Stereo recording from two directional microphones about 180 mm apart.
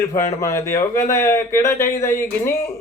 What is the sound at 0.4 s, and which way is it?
Speech, 15° left (ahead or behind).